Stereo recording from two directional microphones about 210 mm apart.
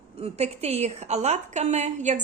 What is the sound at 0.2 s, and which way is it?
A woman's voice, 30° right (ahead or behind).